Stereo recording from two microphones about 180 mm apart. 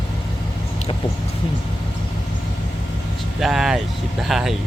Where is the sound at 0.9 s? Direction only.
30° left (ahead or behind).